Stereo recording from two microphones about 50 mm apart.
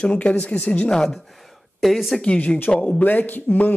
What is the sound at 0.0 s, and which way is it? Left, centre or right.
Speech, left.